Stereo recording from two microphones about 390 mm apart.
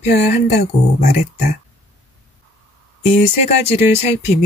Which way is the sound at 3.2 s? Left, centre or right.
Centre.